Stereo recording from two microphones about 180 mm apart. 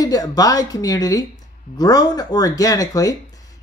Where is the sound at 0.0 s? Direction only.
20° left (ahead or behind).